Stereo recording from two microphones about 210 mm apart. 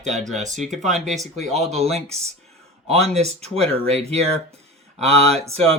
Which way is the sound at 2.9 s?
30° right (ahead or behind).